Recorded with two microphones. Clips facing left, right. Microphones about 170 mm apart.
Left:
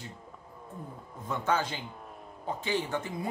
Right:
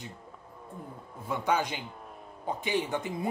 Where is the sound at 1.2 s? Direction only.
10° right (ahead or behind).